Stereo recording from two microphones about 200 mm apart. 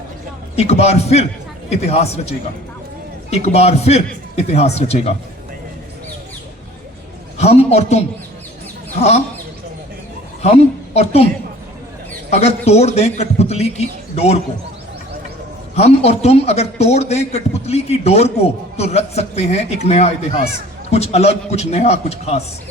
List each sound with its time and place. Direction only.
0.5 s a man's voice: 30° left (ahead or behind)
7.3 s a man's voice: 30° left (ahead or behind)
10.4 s a woman's voice: 30° left (ahead or behind)
12.3 s a man's voice: 30° left (ahead or behind)
15.7 s a man's voice: 30° left (ahead or behind)